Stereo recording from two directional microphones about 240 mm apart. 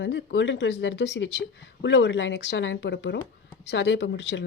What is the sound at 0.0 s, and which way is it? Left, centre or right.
Speech, left.